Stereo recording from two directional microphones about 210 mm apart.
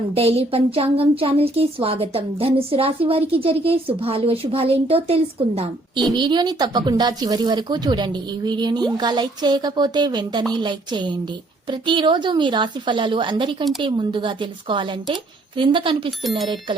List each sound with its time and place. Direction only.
0.1 s speech: 30° right (ahead or behind)